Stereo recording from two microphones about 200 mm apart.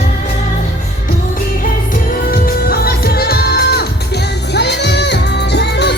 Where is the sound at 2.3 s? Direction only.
50° left (ahead or behind).